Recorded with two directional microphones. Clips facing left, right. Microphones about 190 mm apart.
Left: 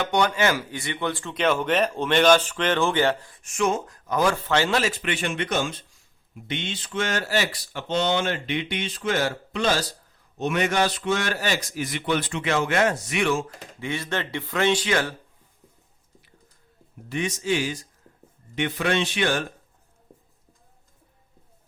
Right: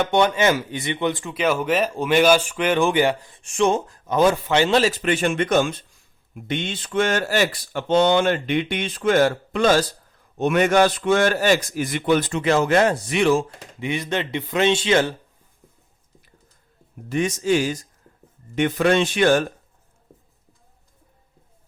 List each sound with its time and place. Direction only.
0.1 s a man's voice: 20° right (ahead or behind)
1.3 s speech: 5° right (ahead or behind)
3.3 s a man's voice: 30° right (ahead or behind)
4.8 s speech: 40° right (ahead or behind)
13.7 s a man's voice: 20° right (ahead or behind)
17.1 s speech: 45° right (ahead or behind)